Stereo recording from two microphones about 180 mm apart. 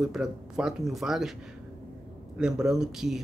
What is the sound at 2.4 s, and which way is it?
Speech, 5° right (ahead or behind).